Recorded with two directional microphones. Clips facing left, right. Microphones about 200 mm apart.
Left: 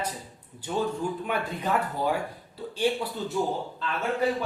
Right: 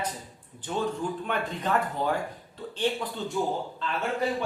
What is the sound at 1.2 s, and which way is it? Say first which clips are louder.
A man's voice: left 1 dB; 10° left (ahead or behind).